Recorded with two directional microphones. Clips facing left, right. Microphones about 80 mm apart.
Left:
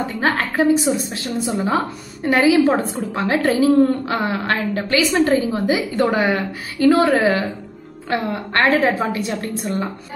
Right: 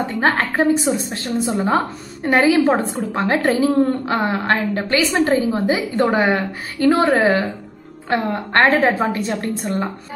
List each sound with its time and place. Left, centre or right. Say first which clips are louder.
0.2 s a woman's voice: right 1 dB; right